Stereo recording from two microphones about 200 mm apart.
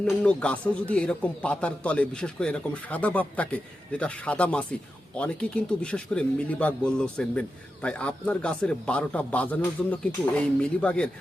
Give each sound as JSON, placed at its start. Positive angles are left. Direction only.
{"t": 0.0, "sound": "a man's voice", "side_deg": 5}